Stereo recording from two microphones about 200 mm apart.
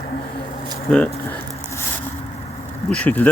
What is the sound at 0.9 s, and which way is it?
Speech, 5° left (ahead or behind).